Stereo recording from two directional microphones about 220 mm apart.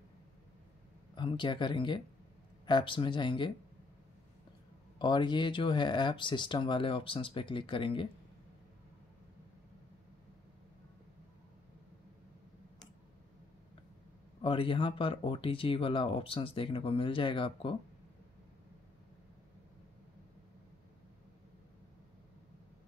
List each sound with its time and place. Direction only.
1.1 s speech: 20° left (ahead or behind)
4.9 s speech: 20° left (ahead or behind)
14.4 s speech: 25° left (ahead or behind)